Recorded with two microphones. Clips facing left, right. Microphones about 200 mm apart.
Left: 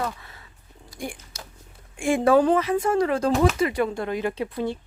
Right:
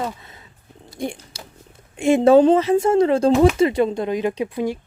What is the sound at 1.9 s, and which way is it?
Speech, 20° right (ahead or behind).